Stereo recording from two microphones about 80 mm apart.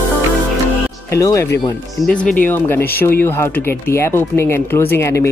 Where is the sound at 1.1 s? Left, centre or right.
Left.